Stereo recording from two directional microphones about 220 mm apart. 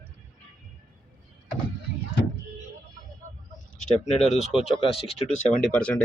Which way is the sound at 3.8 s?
30° left (ahead or behind).